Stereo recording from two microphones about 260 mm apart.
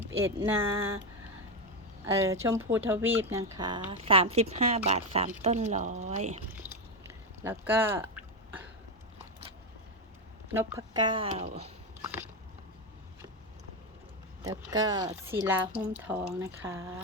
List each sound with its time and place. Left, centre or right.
0.3 s speech: centre
2.0 s speech: centre
6.5 s chewing: centre
10.5 s speech: centre
12.0 s a sound: centre
14.4 s speech: centre